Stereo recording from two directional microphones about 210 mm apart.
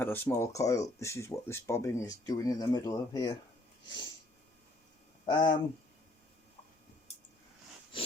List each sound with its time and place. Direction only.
0.0 s speech: 10° left (ahead or behind)
5.2 s speech: 20° left (ahead or behind)